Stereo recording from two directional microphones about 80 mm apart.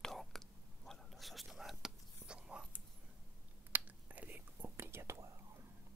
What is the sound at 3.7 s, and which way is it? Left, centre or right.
Whispering, right.